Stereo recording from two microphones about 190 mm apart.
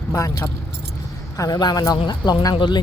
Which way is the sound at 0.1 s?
20° left (ahead or behind).